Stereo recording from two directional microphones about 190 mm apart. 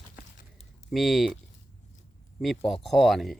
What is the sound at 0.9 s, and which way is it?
Speech, centre (ahead or behind).